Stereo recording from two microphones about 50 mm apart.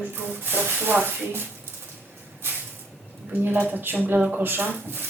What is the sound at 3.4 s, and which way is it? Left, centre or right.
Speech, right.